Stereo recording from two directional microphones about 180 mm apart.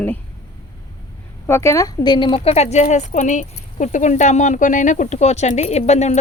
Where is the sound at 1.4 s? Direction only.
15° left (ahead or behind); by 6.2 s 40° left (ahead or behind).